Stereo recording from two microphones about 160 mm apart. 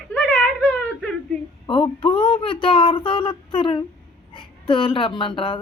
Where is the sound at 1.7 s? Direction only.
35° left (ahead or behind).